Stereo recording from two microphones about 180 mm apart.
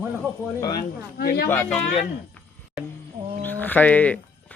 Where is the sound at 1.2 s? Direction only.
55° left (ahead or behind).